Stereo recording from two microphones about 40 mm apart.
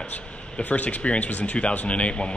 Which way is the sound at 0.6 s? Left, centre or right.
Left.